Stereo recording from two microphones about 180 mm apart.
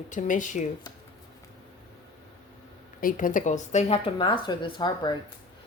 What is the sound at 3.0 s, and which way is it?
Speech, 50° left (ahead or behind).